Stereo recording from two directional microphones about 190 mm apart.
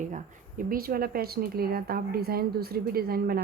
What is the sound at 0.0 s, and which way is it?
Speech, 45° right (ahead or behind).